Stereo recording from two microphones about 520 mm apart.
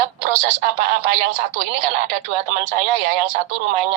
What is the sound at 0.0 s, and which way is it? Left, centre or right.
Speech, right.